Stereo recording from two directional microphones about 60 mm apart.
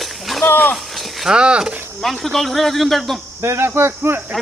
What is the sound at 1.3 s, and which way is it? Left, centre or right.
Speech, centre.